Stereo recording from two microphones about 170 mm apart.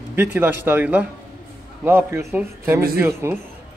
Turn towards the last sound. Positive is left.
turn(degrees=-15)  # may be behind; listen again after turning